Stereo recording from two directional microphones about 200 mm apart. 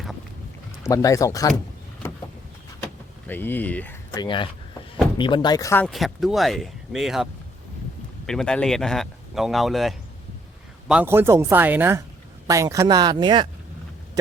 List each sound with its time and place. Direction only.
0.9 s speech: 15° left (ahead or behind)
2.8 s vehicle: 10° left (ahead or behind)
4.1 s speech: 20° left (ahead or behind)
5.8 s speech: centre (ahead or behind)
8.3 s speech: 5° left (ahead or behind); by 13.5 s 20° right (ahead or behind)